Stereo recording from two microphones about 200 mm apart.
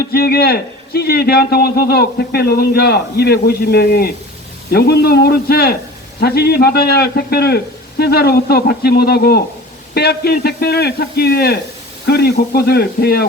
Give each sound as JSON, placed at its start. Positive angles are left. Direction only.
{"t": 0.0, "sound": "a man's voice", "side_deg": 50}